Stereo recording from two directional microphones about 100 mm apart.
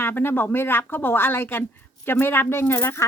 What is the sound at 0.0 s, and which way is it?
Speech, 20° left (ahead or behind).